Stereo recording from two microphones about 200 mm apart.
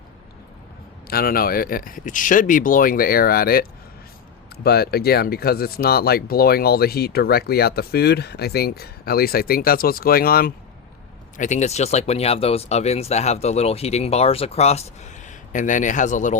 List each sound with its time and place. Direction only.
1.0 s speech: 50° left (ahead or behind)
11.3 s speech: 35° left (ahead or behind)